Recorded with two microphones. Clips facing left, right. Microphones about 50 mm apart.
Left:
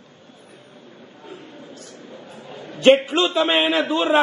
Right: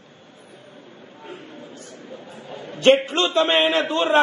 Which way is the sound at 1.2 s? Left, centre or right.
Right.